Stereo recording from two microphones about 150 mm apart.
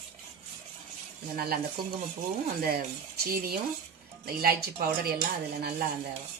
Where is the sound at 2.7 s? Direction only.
90° right.